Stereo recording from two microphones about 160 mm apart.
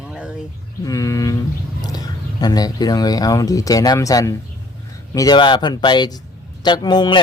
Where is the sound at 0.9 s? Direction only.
20° left (ahead or behind).